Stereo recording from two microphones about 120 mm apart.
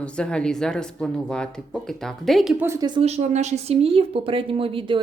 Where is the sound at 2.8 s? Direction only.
40° right (ahead or behind).